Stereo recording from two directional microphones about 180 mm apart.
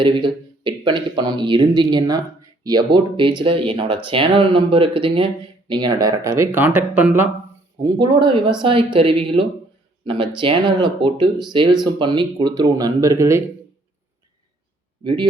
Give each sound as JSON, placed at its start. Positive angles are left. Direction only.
{"t": 0.0, "sound": "speech", "side_deg": -25}
{"t": 7.9, "sound": "speech", "side_deg": -25}
{"t": 15.0, "sound": "speech", "side_deg": -25}